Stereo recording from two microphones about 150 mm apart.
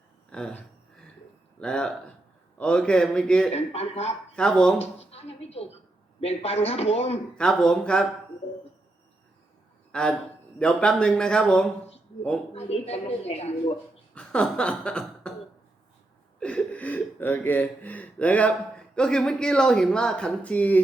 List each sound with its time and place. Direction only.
0.3 s speech: 5° left (ahead or behind)
3.5 s a woman's voice: 45° left (ahead or behind)
4.4 s speech: 5° left (ahead or behind)
4.8 s a sound: 45° left (ahead or behind)
6.1 s a woman's voice: 45° left (ahead or behind)
7.3 s speech: 5° left (ahead or behind)
9.9 s a man's voice: 5° left (ahead or behind)
12.5 s a woman's voice: 45° left (ahead or behind)
14.1 s a sound: 5° left (ahead or behind)
16.4 s speech: 10° left (ahead or behind)